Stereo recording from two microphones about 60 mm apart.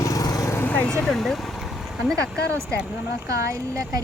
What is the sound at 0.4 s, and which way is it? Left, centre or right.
Vehicle, left.